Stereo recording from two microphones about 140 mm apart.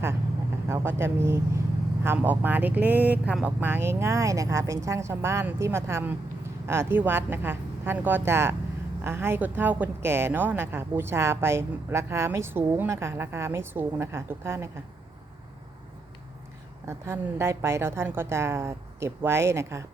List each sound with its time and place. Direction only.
0.7 s a woman's voice: 20° right (ahead or behind)
16.8 s a woman's voice: 20° right (ahead or behind)